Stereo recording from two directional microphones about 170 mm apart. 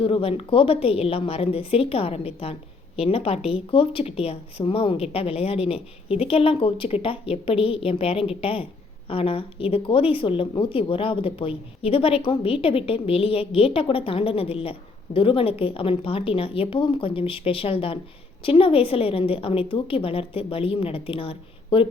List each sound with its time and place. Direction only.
0.0 s a woman's voice: 35° left (ahead or behind)